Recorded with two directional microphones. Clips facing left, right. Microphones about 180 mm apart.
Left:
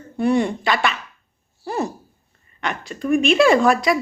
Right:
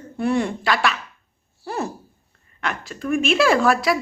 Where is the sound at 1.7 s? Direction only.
Centre (ahead or behind).